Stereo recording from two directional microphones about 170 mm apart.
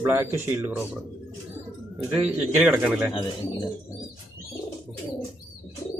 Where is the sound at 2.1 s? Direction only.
5° right (ahead or behind).